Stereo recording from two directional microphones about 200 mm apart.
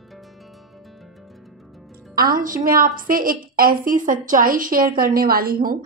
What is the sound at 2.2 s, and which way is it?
A woman's voice, 45° right (ahead or behind).